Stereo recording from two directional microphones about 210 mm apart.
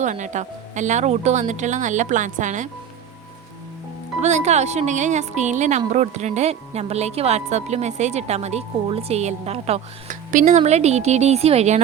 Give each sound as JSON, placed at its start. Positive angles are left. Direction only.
{"t": 0.0, "sound": "a woman's voice", "side_deg": -35}
{"t": 4.2, "sound": "a woman's voice", "side_deg": -35}